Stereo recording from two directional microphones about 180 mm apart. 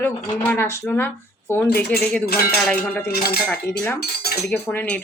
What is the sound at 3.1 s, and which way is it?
Speech, 60° left (ahead or behind).